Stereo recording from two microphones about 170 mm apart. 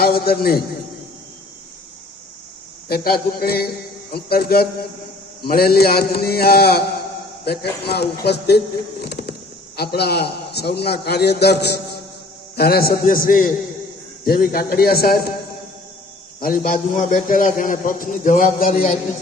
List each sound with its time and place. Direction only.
0.0 s a man's voice: 65° left (ahead or behind)
2.9 s a man's voice: 60° left (ahead or behind)
12.5 s a man's voice: 65° left (ahead or behind)
16.4 s a man's voice: 55° left (ahead or behind)